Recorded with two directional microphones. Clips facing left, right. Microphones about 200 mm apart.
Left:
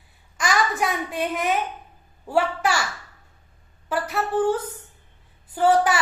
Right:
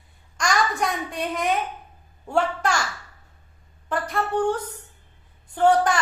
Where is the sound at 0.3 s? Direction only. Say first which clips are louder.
Even; 5° left (ahead or behind).